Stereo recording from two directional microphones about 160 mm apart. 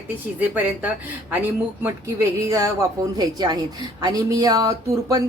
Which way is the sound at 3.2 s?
25° right (ahead or behind).